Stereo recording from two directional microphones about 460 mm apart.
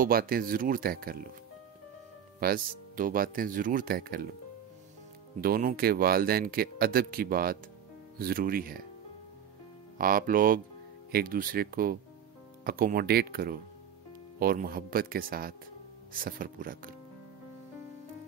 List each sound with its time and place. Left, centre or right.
0.0 s speech: centre
2.4 s speech: centre
5.4 s speech: centre
9.9 s speech: centre